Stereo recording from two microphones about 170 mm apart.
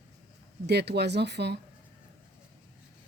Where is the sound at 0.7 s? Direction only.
80° right.